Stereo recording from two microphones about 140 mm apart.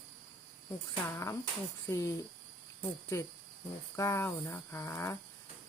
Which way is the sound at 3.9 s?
20° left (ahead or behind).